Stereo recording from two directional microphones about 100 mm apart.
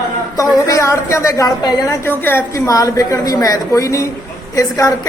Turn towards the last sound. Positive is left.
turn(degrees=35)  # may be behind; listen again after turning